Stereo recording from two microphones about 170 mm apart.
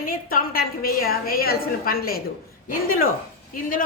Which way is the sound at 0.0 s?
55° left (ahead or behind).